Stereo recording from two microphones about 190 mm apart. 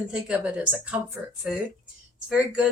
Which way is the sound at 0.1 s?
5° right (ahead or behind).